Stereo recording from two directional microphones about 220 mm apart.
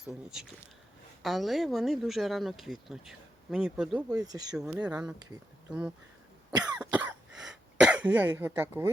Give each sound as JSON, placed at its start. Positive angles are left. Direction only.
{"t": 0.0, "sound": "speech", "side_deg": -5}
{"t": 4.2, "sound": "speech", "side_deg": -15}
{"t": 4.5, "sound": "speech", "side_deg": -5}
{"t": 6.5, "sound": "cough", "side_deg": -20}
{"t": 6.7, "sound": "cough", "side_deg": -5}